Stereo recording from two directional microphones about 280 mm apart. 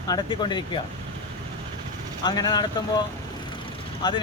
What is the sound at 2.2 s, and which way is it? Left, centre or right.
Speech, centre.